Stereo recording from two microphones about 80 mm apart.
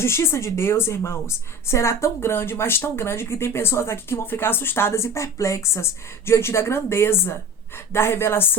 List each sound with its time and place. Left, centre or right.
0.0 s speech: left